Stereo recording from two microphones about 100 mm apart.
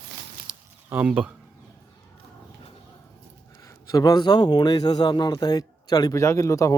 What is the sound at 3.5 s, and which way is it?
A man's voice, 35° left (ahead or behind).